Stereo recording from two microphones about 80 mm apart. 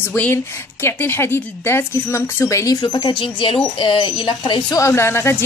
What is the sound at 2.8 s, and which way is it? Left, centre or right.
Speech, left.